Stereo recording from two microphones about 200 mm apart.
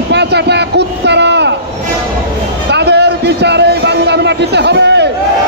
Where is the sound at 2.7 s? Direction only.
55° right (ahead or behind).